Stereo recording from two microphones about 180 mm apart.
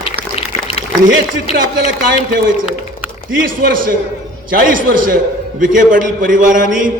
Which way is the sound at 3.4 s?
50° right (ahead or behind).